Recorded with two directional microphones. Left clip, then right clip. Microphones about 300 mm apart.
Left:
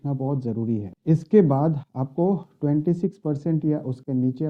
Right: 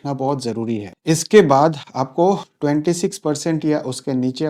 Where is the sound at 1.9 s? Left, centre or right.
Centre.